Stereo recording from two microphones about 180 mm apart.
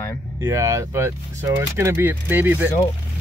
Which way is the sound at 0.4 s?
15° right (ahead or behind).